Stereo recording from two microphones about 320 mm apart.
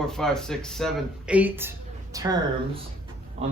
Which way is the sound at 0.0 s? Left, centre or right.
Centre.